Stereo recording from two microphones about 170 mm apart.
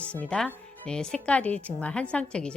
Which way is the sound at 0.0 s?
5° left (ahead or behind).